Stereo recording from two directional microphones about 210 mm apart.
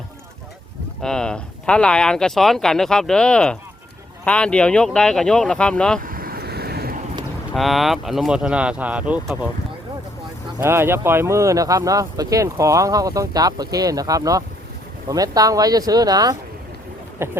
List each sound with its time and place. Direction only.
1.0 s speech: 5° left (ahead or behind)
6.0 s vehicle: 45° right (ahead or behind)
7.5 s speech: centre (ahead or behind)
10.6 s speech: 10° right (ahead or behind)